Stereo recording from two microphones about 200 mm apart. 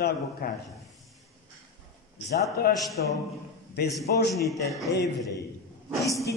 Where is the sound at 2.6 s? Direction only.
50° left (ahead or behind).